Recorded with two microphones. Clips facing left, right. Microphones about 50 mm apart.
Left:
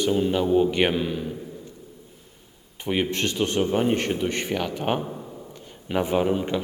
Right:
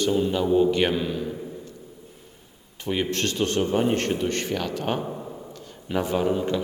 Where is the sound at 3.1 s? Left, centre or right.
Centre.